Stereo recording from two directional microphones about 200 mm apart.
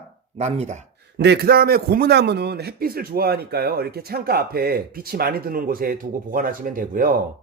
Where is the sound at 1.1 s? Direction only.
55° right (ahead or behind).